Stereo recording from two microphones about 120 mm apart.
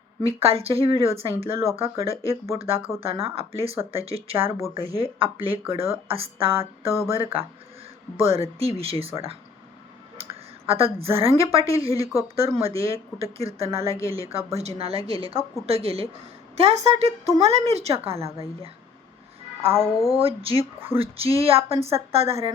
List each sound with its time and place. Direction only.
0.2 s speech: 55° right (ahead or behind)
4.4 s a sound: 20° right (ahead or behind)
4.7 s speech: 50° right (ahead or behind)
6.5 s a sound: 20° right (ahead or behind)
8.1 s speech: 55° right (ahead or behind)
10.7 s speech: 55° right (ahead or behind)
19.8 s speech: 30° left (ahead or behind)
20.1 s speech: 50° right (ahead or behind)